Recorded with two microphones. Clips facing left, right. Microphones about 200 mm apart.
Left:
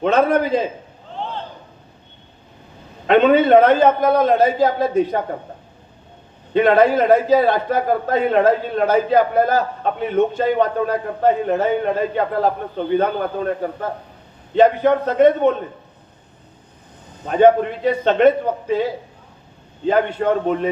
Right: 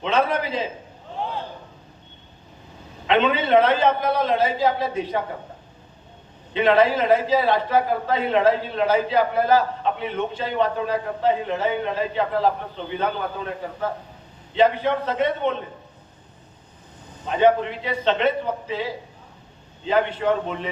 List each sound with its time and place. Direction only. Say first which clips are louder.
0.0 s a man's voice: left 6 dB; 50° left (ahead or behind)
3.1 s a man's voice: left 7 dB; 45° left (ahead or behind)
6.5 s a man's voice: left 4 dB; 45° left (ahead or behind)
17.2 s a man's voice: left 5 dB; 50° left (ahead or behind)